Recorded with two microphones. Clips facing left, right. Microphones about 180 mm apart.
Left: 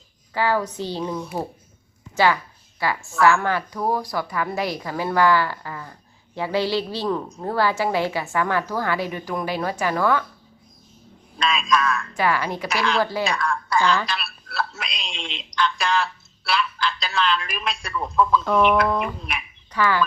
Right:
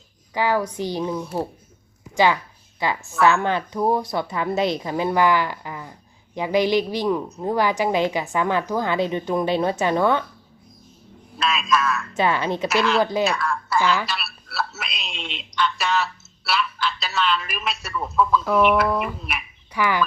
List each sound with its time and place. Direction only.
0.3 s speech: 15° right (ahead or behind)
3.0 s speech: centre (ahead or behind)
3.2 s a woman's voice: 20° right (ahead or behind)
11.3 s speech: 5° right (ahead or behind)
12.1 s a woman's voice: 25° right (ahead or behind)
12.6 s speech: 5° right (ahead or behind)
13.0 s a woman's voice: 20° right (ahead or behind)
13.2 s speech: 5° right (ahead or behind)